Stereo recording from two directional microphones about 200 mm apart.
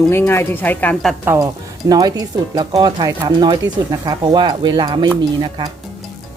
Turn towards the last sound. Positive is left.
turn(degrees=-25)  # may be behind; listen again after turning